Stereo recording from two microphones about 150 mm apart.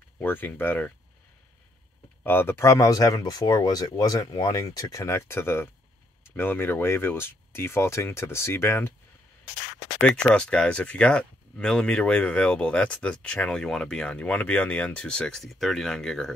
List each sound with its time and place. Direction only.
0.2 s speech: 15° left (ahead or behind)
2.2 s speech: 15° left (ahead or behind)
10.0 s speech: 5° left (ahead or behind)